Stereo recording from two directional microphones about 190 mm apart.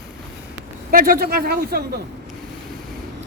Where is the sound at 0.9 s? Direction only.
50° right (ahead or behind).